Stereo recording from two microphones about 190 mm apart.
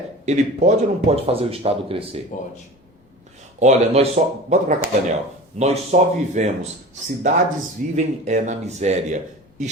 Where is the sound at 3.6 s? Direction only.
35° right (ahead or behind).